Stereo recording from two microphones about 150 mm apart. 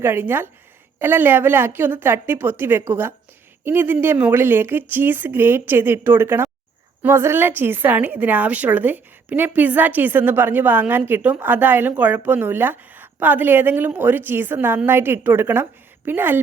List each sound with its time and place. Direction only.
0.0 s a woman's voice: 15° right (ahead or behind)